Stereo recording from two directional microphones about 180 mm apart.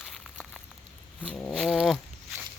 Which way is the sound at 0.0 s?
Centre (ahead or behind).